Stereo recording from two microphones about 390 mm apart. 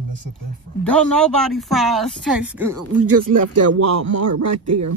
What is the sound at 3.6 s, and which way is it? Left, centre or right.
A man's voice, right.